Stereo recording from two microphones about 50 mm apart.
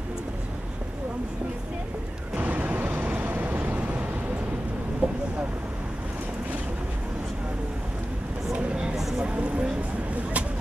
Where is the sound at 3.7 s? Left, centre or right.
Right.